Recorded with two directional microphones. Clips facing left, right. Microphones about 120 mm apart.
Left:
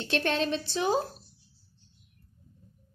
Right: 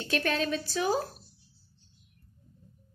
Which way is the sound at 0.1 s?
30° left (ahead or behind).